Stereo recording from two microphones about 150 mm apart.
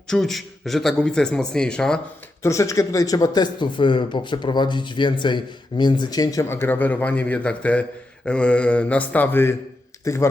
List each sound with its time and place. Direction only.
0.1 s a man's voice: centre (ahead or behind)
2.4 s speech: 20° left (ahead or behind)